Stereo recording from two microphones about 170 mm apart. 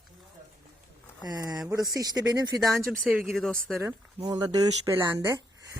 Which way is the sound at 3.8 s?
20° right (ahead or behind).